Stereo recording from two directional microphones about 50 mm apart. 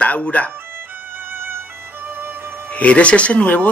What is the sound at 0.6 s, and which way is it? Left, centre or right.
Violin, right.